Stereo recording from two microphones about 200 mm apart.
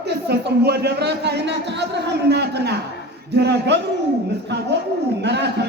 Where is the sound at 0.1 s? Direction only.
55° right (ahead or behind).